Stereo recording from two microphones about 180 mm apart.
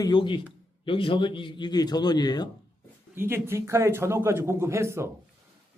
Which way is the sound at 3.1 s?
15° right (ahead or behind).